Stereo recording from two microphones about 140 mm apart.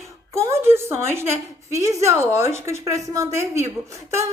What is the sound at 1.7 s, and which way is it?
A woman's voice, 20° right (ahead or behind).